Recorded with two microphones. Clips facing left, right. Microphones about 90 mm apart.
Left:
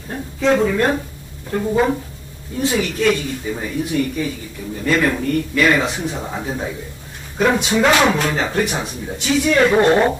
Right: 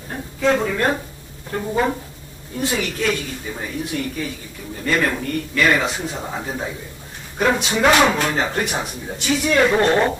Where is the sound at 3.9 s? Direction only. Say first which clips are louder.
Left 5 dB; centre (ahead or behind).